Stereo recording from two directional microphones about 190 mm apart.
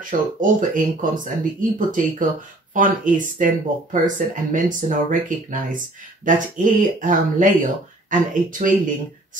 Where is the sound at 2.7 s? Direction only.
45° right (ahead or behind).